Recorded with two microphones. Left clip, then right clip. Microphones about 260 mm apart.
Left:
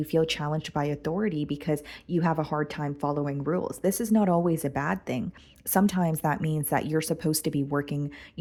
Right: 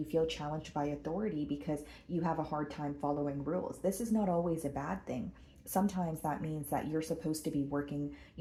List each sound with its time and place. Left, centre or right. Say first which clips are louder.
0.1 s a woman's voice: left 8 dB; left